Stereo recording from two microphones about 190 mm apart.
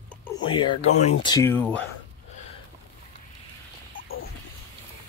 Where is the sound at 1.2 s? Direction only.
20° left (ahead or behind).